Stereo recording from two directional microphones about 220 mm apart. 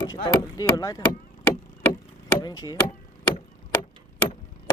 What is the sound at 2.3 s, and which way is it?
Chop, 20° left (ahead or behind).